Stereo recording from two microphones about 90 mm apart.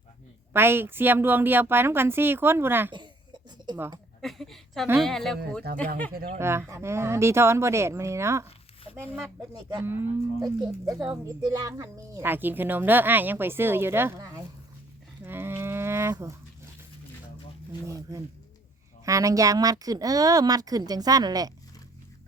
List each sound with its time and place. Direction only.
0.5 s a woman's voice: 25° right (ahead or behind)
4.2 s speech: 5° left (ahead or behind)
6.4 s speech: 30° right (ahead or behind)
8.4 s a sound: 90° left
9.6 s speech: 45° right (ahead or behind)
9.8 s a woman's voice: 25° right (ahead or behind)
10.4 s speech: 45° right (ahead or behind)
12.2 s a woman's voice: 20° right (ahead or behind)
14.2 s speech: 40° right (ahead or behind)
15.2 s livestock: 25° right (ahead or behind)
17.8 s speech: 35° right (ahead or behind)